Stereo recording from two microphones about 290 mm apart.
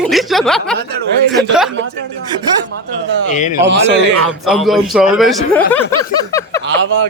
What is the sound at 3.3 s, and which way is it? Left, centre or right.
Speech, left.